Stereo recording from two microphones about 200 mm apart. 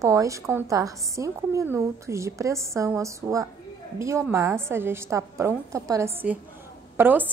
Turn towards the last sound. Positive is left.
turn(degrees=-10)  # may be behind; listen again after turning